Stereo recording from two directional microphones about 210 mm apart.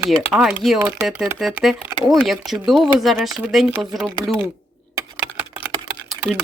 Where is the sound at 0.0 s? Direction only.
5° right (ahead or behind).